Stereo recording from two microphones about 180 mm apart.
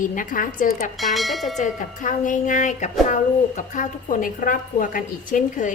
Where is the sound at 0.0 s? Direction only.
50° left (ahead or behind).